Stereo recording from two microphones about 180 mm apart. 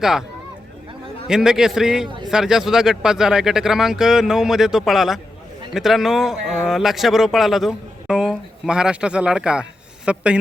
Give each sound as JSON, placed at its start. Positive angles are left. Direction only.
{"t": 0.0, "sound": "speech", "side_deg": -5}
{"t": 1.3, "sound": "speech", "side_deg": -5}
{"t": 2.0, "sound": "speech", "side_deg": -25}
{"t": 2.3, "sound": "a man's voice", "side_deg": -5}